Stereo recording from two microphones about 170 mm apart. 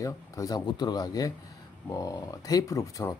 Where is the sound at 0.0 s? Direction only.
20° left (ahead or behind).